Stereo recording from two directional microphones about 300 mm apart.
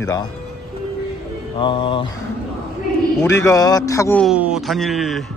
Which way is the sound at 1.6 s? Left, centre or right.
Centre.